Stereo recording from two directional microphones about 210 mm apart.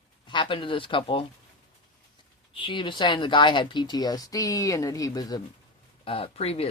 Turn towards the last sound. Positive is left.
turn(degrees=30)  # may be behind; listen again after turning